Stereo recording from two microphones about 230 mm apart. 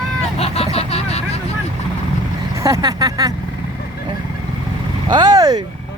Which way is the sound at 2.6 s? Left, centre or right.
Centre.